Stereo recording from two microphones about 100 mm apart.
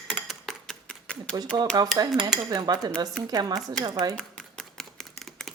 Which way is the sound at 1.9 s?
45° right (ahead or behind).